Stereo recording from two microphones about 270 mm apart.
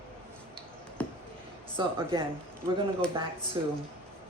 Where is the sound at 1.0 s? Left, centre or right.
Centre.